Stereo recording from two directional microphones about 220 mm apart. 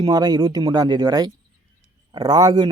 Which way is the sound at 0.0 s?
15° right (ahead or behind).